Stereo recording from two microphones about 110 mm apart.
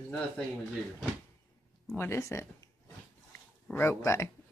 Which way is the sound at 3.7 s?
20° left (ahead or behind).